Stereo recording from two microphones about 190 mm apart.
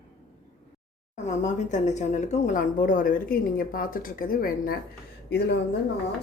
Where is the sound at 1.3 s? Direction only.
40° left (ahead or behind).